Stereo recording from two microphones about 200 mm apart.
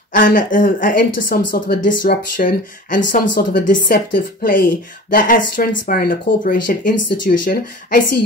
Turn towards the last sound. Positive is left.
turn(degrees=45)  # may be behind; listen again after turning